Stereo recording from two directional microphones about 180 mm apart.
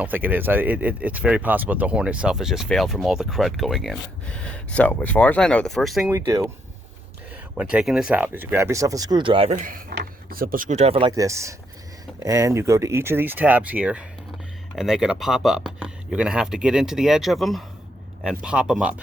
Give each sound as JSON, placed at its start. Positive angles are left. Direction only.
{"t": 0.0, "sound": "speech", "side_deg": -10}
{"t": 6.1, "sound": "speech", "side_deg": -15}
{"t": 7.5, "sound": "speech", "side_deg": -5}
{"t": 9.9, "sound": "speech", "side_deg": -60}
{"t": 11.1, "sound": "speech", "side_deg": -15}